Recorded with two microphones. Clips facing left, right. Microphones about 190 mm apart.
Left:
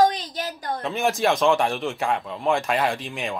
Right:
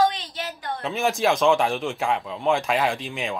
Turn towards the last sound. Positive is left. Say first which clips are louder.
# even
turn(degrees=0)  # may be behind; listen again after turning